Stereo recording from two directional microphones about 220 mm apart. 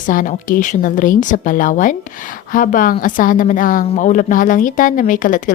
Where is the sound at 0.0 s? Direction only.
40° left (ahead or behind).